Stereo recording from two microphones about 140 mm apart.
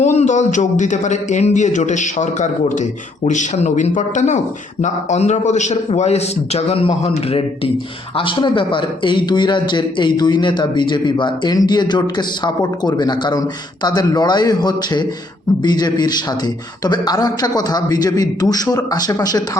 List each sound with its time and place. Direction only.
0.0 s a man's voice: 55° left (ahead or behind); by 19.4 s 30° left (ahead or behind)